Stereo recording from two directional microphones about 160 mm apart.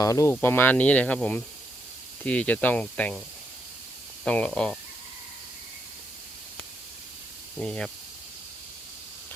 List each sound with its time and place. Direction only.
0.0 s speech: 20° left (ahead or behind)
4.2 s speech: 5° left (ahead or behind)
7.6 s speech: 5° left (ahead or behind)